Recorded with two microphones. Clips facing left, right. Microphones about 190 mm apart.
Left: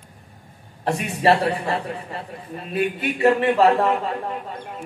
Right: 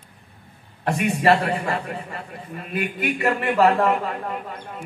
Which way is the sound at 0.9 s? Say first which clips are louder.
Even; 35° left (ahead or behind).